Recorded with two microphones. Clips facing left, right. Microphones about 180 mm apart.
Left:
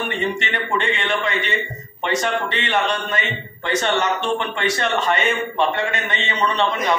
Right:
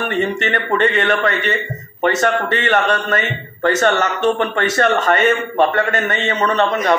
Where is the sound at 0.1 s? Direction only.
45° right (ahead or behind).